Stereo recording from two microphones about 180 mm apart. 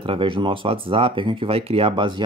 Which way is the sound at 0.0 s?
30° right (ahead or behind).